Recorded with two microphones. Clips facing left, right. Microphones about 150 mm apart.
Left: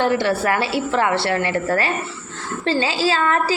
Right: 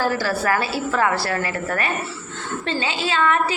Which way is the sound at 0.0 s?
25° left (ahead or behind).